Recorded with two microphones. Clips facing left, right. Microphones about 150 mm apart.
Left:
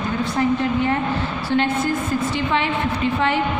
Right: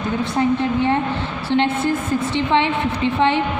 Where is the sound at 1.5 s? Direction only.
30° right (ahead or behind).